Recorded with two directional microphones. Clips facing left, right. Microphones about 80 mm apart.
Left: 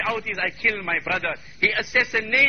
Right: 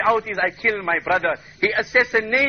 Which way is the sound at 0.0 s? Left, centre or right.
Right.